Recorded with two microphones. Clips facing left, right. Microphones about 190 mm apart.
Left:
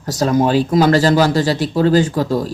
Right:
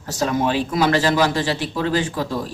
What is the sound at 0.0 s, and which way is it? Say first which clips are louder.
Speech: left 5 dB; 40° left (ahead or behind).